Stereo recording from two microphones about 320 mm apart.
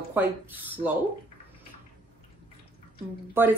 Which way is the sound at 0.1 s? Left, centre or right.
Centre.